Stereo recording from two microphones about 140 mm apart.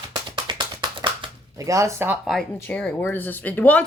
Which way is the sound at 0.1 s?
35° right (ahead or behind).